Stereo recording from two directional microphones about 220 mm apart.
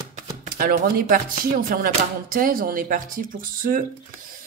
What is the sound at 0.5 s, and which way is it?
Speech, 40° right (ahead or behind).